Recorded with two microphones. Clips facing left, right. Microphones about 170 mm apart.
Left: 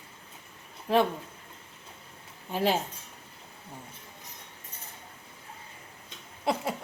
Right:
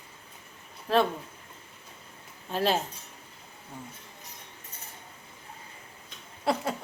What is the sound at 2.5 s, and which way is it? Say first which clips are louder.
Speech: even; 15° left (ahead or behind).